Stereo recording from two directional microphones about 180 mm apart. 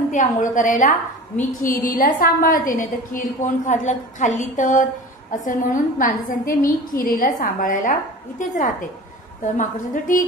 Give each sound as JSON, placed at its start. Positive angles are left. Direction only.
{"t": 0.1, "sound": "a woman's voice", "side_deg": 45}